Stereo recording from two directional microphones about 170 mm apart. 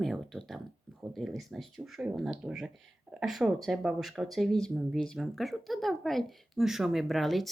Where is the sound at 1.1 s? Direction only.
Centre (ahead or behind).